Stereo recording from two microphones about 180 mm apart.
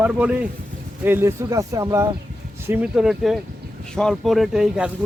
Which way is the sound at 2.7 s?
5° right (ahead or behind).